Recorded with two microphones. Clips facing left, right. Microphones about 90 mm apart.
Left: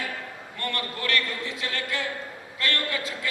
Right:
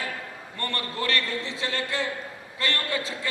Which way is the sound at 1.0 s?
30° right (ahead or behind).